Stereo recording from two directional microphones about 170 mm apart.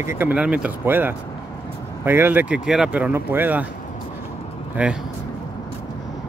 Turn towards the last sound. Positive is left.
turn(degrees=-10)  # may be behind; listen again after turning